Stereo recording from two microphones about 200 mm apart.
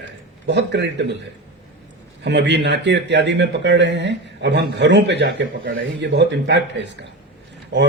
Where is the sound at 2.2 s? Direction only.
60° right (ahead or behind).